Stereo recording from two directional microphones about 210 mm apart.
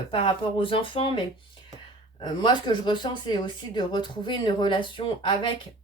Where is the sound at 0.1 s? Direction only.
25° left (ahead or behind).